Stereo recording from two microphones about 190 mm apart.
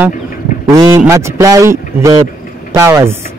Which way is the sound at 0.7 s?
15° right (ahead or behind).